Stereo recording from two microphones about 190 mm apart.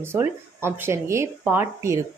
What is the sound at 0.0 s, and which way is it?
Speech, 15° right (ahead or behind).